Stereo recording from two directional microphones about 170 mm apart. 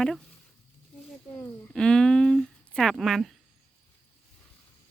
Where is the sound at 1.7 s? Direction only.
5° left (ahead or behind).